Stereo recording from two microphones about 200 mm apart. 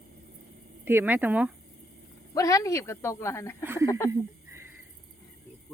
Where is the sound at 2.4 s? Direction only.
15° left (ahead or behind).